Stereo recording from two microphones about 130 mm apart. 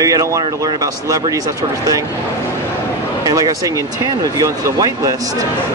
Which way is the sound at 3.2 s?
25° right (ahead or behind).